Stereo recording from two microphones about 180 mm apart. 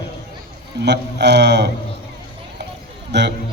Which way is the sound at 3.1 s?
75° right (ahead or behind).